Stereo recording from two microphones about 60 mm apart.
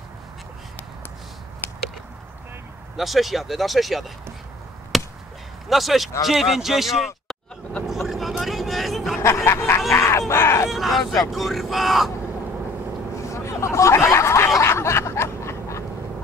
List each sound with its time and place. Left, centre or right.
1.6 s a sound: left
3.0 s a man's voice: centre
4.9 s chop: centre
5.7 s a man's voice: centre
8.1 s vehicle: centre
9.2 s a sound: left
10.7 s a man's voice: centre
13.3 s hubbub: left
14.6 s snicker: left